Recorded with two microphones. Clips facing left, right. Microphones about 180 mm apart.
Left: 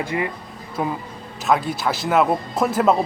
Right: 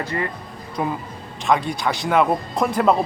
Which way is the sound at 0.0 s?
10° left (ahead or behind).